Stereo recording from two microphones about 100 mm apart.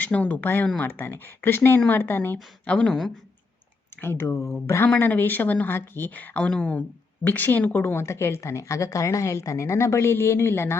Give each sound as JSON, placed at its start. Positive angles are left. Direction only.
{"t": 0.0, "sound": "a woman's voice", "side_deg": 15}
{"t": 2.7, "sound": "speech", "side_deg": 5}
{"t": 4.0, "sound": "a woman's voice", "side_deg": 20}